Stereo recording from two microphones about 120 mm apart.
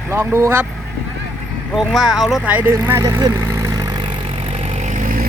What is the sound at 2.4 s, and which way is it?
Speech, 15° right (ahead or behind).